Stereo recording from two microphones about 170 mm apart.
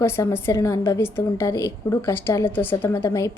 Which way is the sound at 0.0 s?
15° left (ahead or behind).